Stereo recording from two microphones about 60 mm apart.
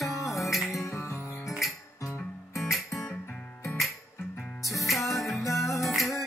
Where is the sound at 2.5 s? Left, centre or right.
Centre.